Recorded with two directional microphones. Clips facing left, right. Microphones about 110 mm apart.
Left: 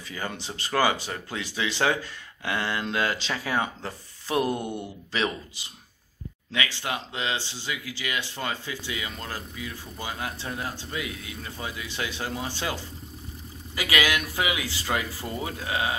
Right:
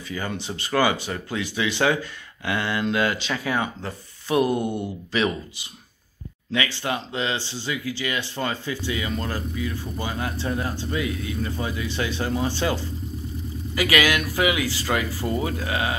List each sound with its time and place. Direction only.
0.1 s speech: 35° left (ahead or behind)
4.4 s speech: 15° right (ahead or behind)
5.1 s speech: 35° left (ahead or behind)
6.5 s speech: 10° left (ahead or behind)
13.7 s speech: 20° left (ahead or behind)